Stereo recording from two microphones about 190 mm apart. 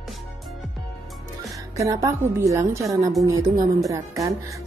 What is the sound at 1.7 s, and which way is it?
Speech, 15° right (ahead or behind).